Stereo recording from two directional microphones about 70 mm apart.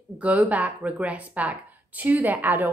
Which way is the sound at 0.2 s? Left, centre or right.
Right.